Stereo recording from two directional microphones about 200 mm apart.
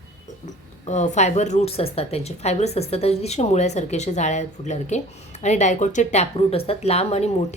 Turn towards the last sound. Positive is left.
turn(degrees=30)  # may be behind; listen again after turning